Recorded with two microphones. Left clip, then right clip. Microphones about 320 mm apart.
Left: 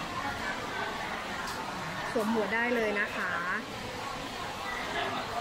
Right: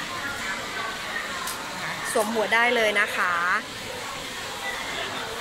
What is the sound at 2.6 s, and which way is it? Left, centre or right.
Speech, right.